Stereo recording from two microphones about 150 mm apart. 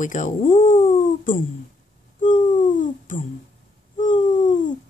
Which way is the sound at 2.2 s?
60° left (ahead or behind).